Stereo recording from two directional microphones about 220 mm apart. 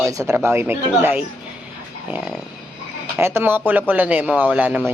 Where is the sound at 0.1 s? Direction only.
15° right (ahead or behind).